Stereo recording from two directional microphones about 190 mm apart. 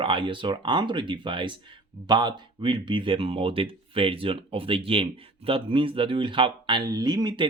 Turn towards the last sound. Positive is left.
turn(degrees=-25)  # may be behind; listen again after turning